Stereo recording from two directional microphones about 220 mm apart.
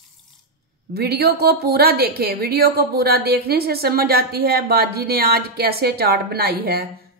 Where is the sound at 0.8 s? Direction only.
45° right (ahead or behind).